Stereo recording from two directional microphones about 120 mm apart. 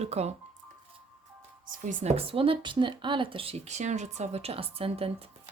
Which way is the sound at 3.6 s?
75° right (ahead or behind).